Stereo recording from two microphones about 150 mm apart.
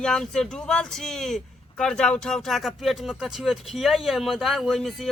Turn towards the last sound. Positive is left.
turn(degrees=0)  # may be behind; listen again after turning